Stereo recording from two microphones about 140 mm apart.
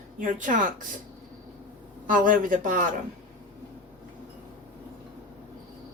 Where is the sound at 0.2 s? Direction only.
70° right (ahead or behind).